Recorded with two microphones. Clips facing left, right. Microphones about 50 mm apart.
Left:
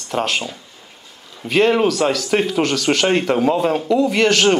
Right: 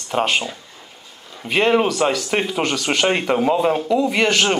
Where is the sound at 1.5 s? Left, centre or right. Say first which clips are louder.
Left 2 dB; centre.